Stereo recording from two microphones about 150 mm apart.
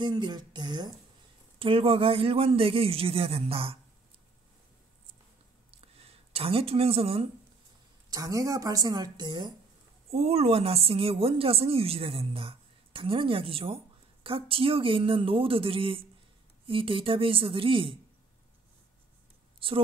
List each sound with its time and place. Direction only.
0.0 s a woman's voice: 30° right (ahead or behind)
5.7 s a sound: 40° right (ahead or behind)
8.1 s a woman's voice: 20° right (ahead or behind)
10.0 s a woman's voice: 45° right (ahead or behind)